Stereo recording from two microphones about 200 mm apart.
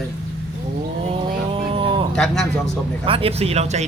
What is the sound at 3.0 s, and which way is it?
Speech, 30° right (ahead or behind).